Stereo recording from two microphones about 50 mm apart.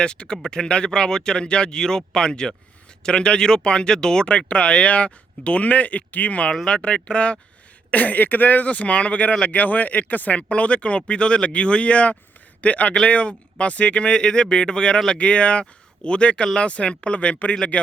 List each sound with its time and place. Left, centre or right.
0.0 s speech: centre